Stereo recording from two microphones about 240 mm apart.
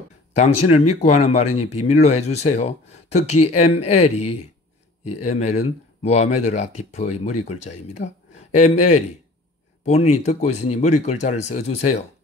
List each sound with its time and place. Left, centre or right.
0.4 s speech: left